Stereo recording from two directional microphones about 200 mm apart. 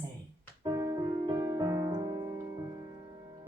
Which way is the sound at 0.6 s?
15° right (ahead or behind).